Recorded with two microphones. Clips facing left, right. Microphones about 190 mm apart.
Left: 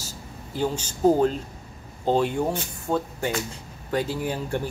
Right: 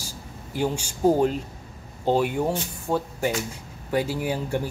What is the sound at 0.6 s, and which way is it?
Speech, 10° right (ahead or behind).